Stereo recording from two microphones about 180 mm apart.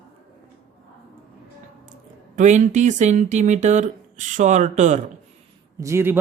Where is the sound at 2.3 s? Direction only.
45° right (ahead or behind).